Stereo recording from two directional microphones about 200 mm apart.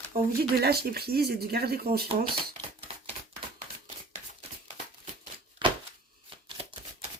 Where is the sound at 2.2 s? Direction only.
30° right (ahead or behind).